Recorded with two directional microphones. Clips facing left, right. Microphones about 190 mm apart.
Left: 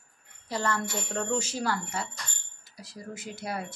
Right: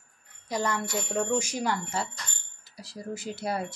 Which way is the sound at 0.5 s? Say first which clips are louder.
Right 1 dB; 15° right (ahead or behind).